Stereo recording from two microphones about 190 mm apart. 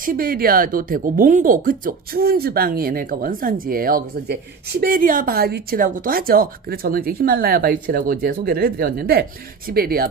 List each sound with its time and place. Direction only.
0.0 s speech: 50° right (ahead or behind)